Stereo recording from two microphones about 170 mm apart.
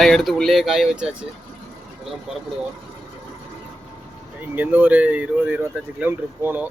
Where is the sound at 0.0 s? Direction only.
Centre (ahead or behind).